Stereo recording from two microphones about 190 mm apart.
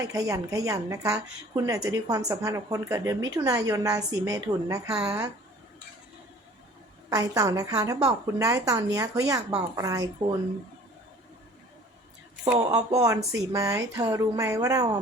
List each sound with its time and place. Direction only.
0.0 s a woman's voice: 15° right (ahead or behind)
7.1 s a woman's voice: 20° right (ahead or behind)
12.5 s a woman's voice: 20° right (ahead or behind)